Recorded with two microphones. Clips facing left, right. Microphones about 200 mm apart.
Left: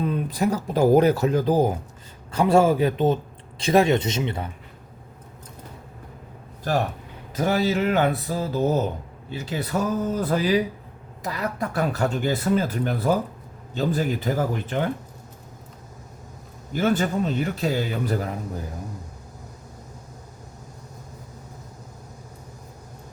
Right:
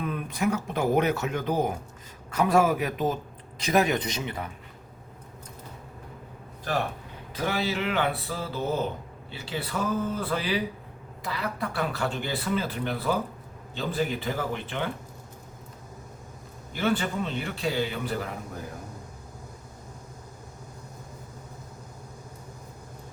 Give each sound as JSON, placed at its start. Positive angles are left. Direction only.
{"t": 0.0, "sound": "a man's voice", "side_deg": 30}
{"t": 7.3, "sound": "speech", "side_deg": 45}
{"t": 16.7, "sound": "speech", "side_deg": 40}